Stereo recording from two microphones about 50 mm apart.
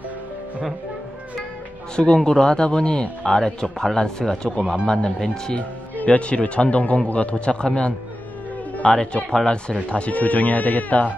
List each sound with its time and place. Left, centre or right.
2.0 s a man's voice: centre; by 11.1 s left